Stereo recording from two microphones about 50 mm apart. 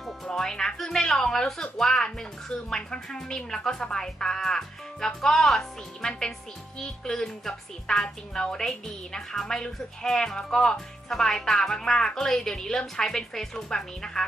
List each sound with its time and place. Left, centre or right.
0.3 s a woman's voice: centre
6.0 s a woman's voice: centre